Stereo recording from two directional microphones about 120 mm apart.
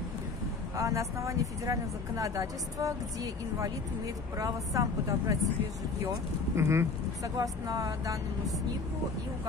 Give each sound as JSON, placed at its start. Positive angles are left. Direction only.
{"t": 0.7, "sound": "speech", "side_deg": -25}
{"t": 4.4, "sound": "speech", "side_deg": -25}
{"t": 6.5, "sound": "speech", "side_deg": -25}